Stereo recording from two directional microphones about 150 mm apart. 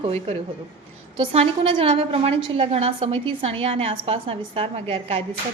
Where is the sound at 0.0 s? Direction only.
45° right (ahead or behind).